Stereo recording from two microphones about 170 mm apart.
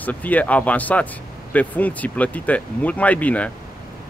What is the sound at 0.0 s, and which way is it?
Speech, 10° left (ahead or behind).